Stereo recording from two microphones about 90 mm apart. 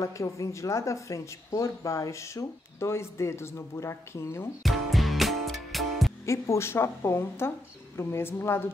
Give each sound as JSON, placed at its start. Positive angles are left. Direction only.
{"t": 0.0, "sound": "speech", "side_deg": 35}
{"t": 4.6, "sound": "music", "side_deg": 0}
{"t": 6.2, "sound": "a woman's voice", "side_deg": 35}